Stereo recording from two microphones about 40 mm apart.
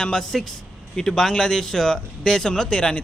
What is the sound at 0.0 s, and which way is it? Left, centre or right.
Speech, centre.